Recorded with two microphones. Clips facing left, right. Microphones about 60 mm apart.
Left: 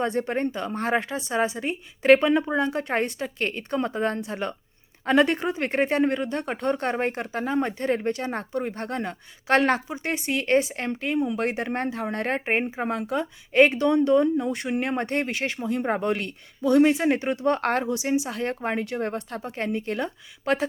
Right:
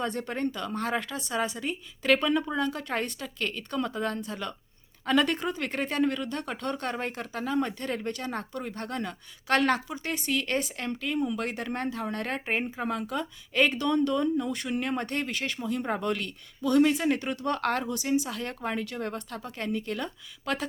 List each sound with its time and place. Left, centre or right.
0.0 s a woman's voice: left